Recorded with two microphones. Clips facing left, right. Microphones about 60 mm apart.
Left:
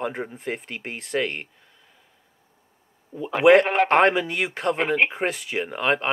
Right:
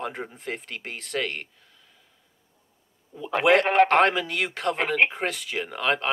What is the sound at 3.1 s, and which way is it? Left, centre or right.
Speech, left.